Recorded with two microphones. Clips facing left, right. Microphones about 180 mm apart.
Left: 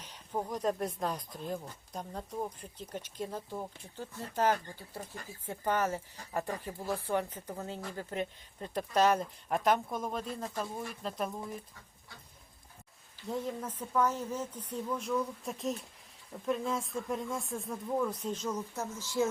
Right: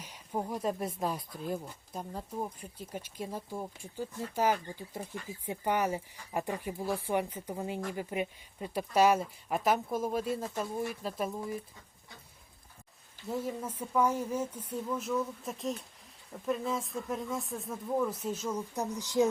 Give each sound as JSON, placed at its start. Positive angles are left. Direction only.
{"t": 0.0, "sound": "speech", "side_deg": -10}
{"t": 13.2, "sound": "speech", "side_deg": -5}